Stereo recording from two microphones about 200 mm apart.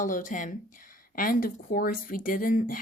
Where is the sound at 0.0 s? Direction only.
40° left (ahead or behind).